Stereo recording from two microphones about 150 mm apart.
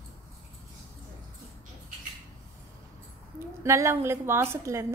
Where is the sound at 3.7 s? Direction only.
20° right (ahead or behind).